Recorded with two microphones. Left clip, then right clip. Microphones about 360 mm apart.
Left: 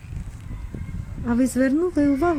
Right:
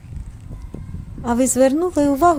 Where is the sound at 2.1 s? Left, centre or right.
Right.